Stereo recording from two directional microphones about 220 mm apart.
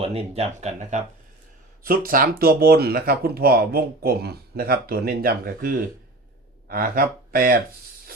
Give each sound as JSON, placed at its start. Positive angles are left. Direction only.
{"t": 0.0, "sound": "speech", "side_deg": -30}